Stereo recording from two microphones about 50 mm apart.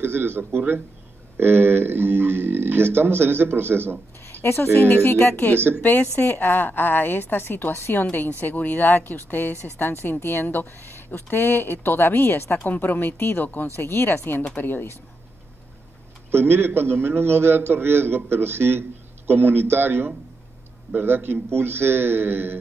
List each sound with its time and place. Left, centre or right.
0.0 s a man's voice: right
4.4 s speech: left
4.7 s speech: left
8.1 s speech: left
12.6 s speech: left
16.3 s a man's voice: right